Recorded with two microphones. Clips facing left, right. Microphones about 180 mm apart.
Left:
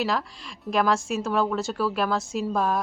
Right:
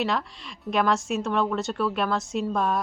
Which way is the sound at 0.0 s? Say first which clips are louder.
Even; centre (ahead or behind).